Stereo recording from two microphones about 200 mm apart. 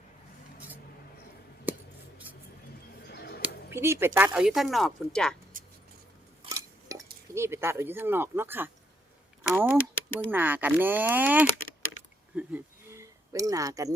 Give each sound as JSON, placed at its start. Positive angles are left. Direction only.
{"t": 1.7, "sound": "scissors", "side_deg": -10}
{"t": 3.1, "sound": "a sound", "side_deg": 55}
{"t": 3.4, "sound": "speech", "side_deg": -10}
{"t": 6.5, "sound": "cutlery", "side_deg": -15}
{"t": 9.4, "sound": "speech", "side_deg": -10}
{"t": 12.4, "sound": "a sound", "side_deg": -10}